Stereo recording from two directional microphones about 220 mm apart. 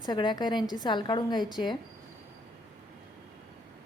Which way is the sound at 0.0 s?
20° left (ahead or behind).